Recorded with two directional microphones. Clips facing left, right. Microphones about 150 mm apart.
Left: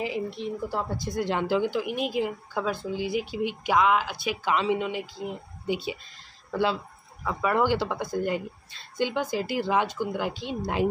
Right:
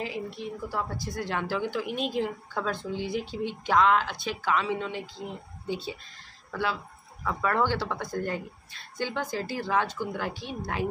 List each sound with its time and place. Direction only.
0.0 s speech: 20° left (ahead or behind)
4.5 s speech: 20° left (ahead or behind)
6.5 s speech: 25° left (ahead or behind)
7.2 s speech: 10° left (ahead or behind)